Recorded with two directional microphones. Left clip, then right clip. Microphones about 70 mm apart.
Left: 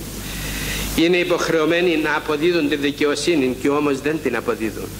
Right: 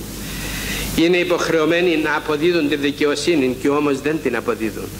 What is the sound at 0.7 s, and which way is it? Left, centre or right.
Speech, left.